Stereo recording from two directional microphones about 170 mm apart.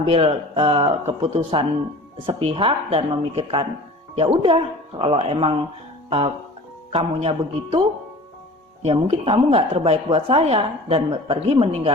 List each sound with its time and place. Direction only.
0.0 s speech: 35° right (ahead or behind)
6.1 s music: 35° right (ahead or behind)
6.9 s speech: 35° right (ahead or behind)